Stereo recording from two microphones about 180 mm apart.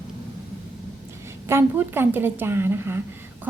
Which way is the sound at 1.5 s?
15° right (ahead or behind).